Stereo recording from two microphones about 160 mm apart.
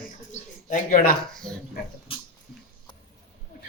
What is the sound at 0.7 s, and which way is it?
Speech, 55° left (ahead or behind).